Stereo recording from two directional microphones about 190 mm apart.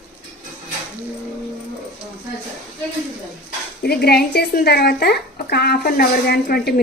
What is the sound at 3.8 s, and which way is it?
A woman's voice, 55° left (ahead or behind).